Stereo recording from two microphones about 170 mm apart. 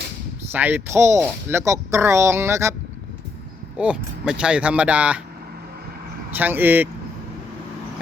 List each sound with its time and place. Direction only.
0.5 s speech: 10° right (ahead or behind)
3.8 s speech: 5° right (ahead or behind)
6.3 s speech: 10° right (ahead or behind)